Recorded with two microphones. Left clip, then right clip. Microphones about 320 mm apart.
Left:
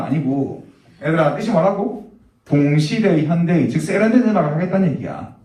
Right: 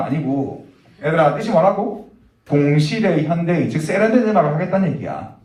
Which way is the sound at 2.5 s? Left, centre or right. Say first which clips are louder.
Right 1 dB; right.